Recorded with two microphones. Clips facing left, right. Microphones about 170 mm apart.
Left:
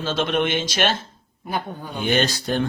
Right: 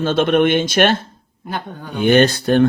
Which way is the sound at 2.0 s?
55° right (ahead or behind).